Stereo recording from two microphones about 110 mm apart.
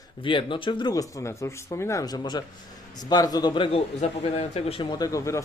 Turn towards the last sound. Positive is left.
turn(degrees=30)  # may be behind; listen again after turning